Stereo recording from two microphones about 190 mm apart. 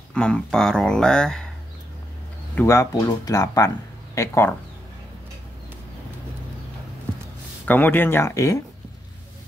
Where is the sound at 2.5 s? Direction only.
15° left (ahead or behind).